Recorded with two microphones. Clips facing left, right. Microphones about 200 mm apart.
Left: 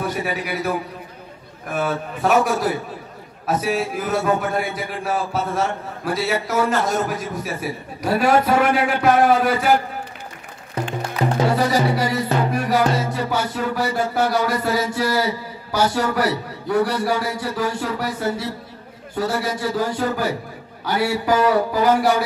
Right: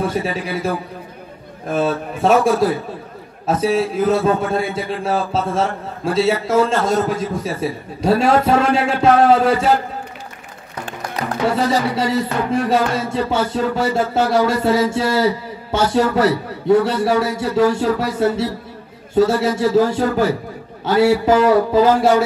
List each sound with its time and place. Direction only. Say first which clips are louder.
0.0 s a man's voice: right 3 dB; 25° right (ahead or behind)
1.7 s music: right 4 dB; 25° right (ahead or behind)
11.5 s music: right 1 dB; 25° right (ahead or behind)